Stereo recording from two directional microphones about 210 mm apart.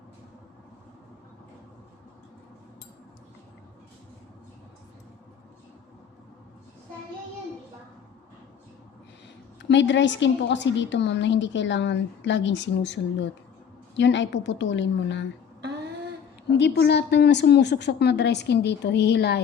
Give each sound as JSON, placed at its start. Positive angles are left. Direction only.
{"t": 9.6, "sound": "a woman's voice", "side_deg": 60}
{"t": 16.5, "sound": "a woman's voice", "side_deg": 55}